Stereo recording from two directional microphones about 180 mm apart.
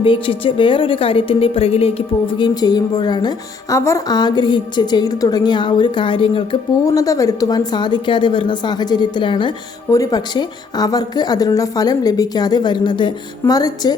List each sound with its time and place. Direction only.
0.0 s a woman's voice: 30° left (ahead or behind)